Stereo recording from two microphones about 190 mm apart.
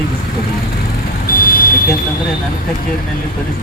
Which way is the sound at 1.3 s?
50° left (ahead or behind).